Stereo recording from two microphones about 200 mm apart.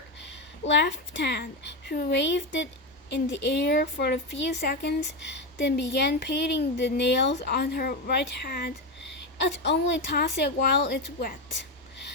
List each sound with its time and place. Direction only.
0.3 s a woman's voice: 60° left (ahead or behind)